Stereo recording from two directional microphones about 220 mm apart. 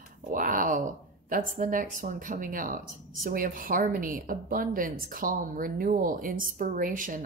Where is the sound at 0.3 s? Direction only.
40° right (ahead or behind).